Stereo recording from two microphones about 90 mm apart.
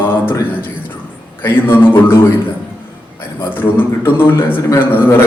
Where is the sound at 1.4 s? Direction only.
25° left (ahead or behind).